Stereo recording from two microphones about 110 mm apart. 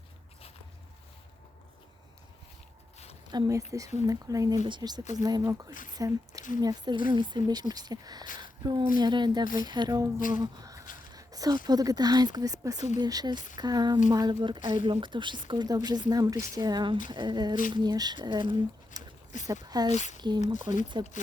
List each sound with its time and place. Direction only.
3.2 s speech: 40° right (ahead or behind)
19.6 s speech: 40° right (ahead or behind)
19.9 s speech: 90° left
20.7 s speech: 35° right (ahead or behind)